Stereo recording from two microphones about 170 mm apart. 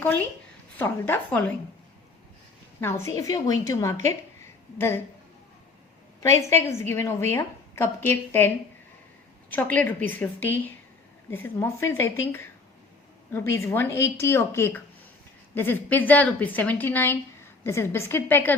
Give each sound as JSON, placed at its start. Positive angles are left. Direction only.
{"t": 0.8, "sound": "a woman's voice", "side_deg": 10}
{"t": 2.8, "sound": "a woman's voice", "side_deg": 20}
{"t": 6.1, "sound": "a woman's voice", "side_deg": 15}
{"t": 9.7, "sound": "a woman's voice", "side_deg": 10}